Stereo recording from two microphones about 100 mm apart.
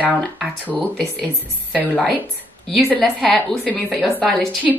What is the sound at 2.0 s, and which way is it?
Speech, 10° left (ahead or behind).